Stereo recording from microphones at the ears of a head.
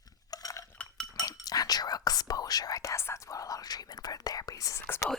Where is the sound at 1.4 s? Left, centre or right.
Left.